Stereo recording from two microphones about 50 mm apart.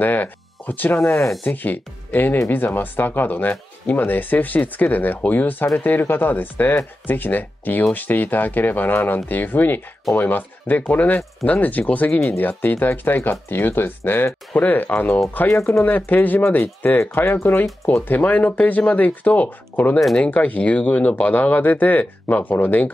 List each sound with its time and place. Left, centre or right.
0.0 s speech: left
15.4 s speech: left
15.8 s speech: left
17.0 s speech: left
18.0 s speech: left